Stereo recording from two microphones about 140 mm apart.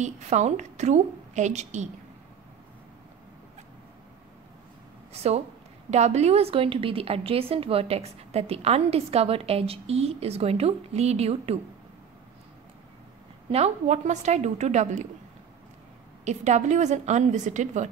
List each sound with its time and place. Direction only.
0.0 s a woman's voice: 55° right (ahead or behind)
5.1 s a woman's voice: 50° right (ahead or behind)
13.5 s a woman's voice: 50° right (ahead or behind)
16.3 s a woman's voice: 55° right (ahead or behind)